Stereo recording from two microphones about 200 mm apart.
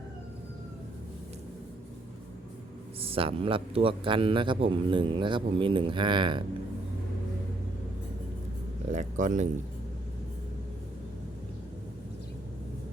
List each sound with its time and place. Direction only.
3.0 s a man's voice: 30° right (ahead or behind)
8.9 s speech: 40° right (ahead or behind)